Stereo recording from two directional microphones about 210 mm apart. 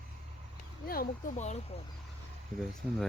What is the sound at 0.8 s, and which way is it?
Speech, 45° left (ahead or behind).